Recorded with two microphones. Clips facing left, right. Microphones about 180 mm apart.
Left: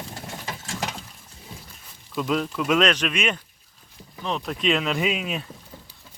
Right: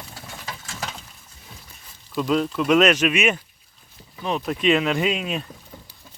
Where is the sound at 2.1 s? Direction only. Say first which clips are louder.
Right 3 dB; centre (ahead or behind).